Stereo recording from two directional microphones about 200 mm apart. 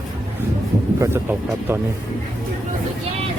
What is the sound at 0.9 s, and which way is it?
Speech, 15° right (ahead or behind).